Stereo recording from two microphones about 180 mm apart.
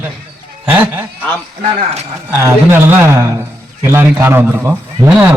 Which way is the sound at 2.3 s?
15° right (ahead or behind).